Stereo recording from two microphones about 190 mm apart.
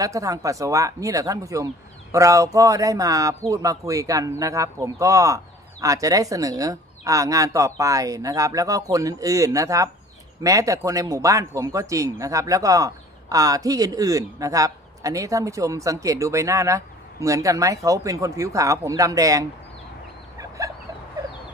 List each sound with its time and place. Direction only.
0.0 s a man's voice: 15° right (ahead or behind)
20.3 s fowl: 15° right (ahead or behind)